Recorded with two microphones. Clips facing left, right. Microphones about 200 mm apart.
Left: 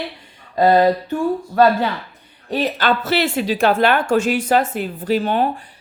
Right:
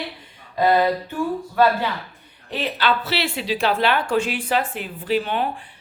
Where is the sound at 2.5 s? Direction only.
45° left (ahead or behind).